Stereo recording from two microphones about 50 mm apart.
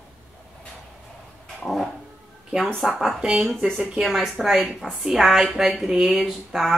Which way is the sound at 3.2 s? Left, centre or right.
Centre.